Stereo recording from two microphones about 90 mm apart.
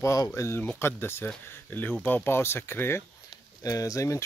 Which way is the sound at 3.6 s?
40° left (ahead or behind).